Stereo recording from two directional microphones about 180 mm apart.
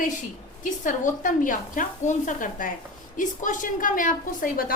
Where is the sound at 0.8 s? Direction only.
45° left (ahead or behind).